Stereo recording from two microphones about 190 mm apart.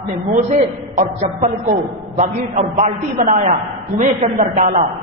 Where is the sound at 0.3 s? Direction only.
40° right (ahead or behind).